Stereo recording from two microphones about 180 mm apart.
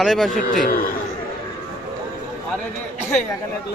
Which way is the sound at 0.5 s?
50° left (ahead or behind).